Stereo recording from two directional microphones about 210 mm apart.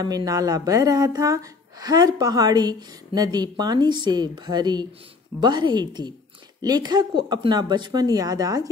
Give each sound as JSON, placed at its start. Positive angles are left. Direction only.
{"t": 0.0, "sound": "speech", "side_deg": -15}